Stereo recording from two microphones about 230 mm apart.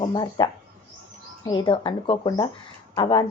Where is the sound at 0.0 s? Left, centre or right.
Centre.